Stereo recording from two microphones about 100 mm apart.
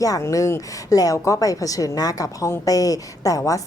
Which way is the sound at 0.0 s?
35° left (ahead or behind).